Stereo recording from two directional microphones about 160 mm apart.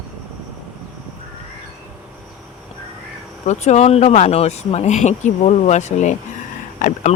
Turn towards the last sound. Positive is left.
turn(degrees=55)  # may be behind; listen again after turning